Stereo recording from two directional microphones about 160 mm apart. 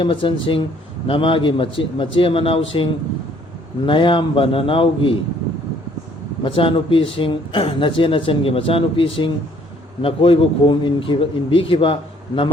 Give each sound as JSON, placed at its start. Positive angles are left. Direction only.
{"t": 0.0, "sound": "speech", "side_deg": 30}
{"t": 6.4, "sound": "speech", "side_deg": 35}